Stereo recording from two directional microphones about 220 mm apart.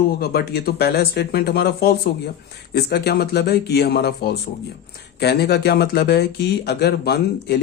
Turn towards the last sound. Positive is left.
turn(degrees=45)  # may be behind; listen again after turning